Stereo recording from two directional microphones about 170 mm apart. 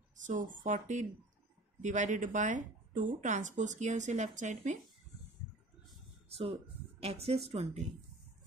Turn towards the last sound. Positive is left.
turn(degrees=-35)  # may be behind; listen again after turning